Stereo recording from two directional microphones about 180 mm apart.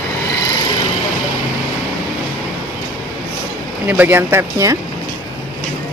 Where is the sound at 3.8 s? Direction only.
10° right (ahead or behind).